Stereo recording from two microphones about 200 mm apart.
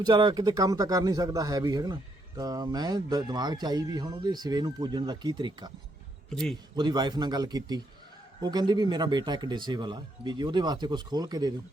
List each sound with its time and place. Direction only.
0.0 s speech: 20° right (ahead or behind)
6.3 s speech: centre (ahead or behind)
6.7 s speech: 20° right (ahead or behind)